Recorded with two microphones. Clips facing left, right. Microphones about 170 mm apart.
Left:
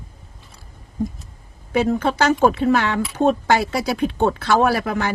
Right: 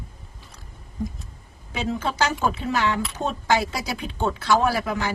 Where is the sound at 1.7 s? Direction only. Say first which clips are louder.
Left 8 dB; 60° left (ahead or behind).